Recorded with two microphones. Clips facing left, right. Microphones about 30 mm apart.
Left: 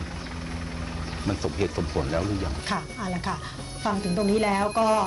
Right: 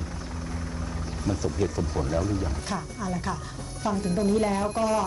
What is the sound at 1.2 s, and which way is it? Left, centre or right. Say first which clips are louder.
Speech: even; left.